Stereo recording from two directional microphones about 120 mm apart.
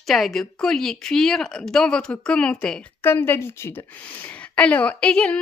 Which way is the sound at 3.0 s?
20° left (ahead or behind).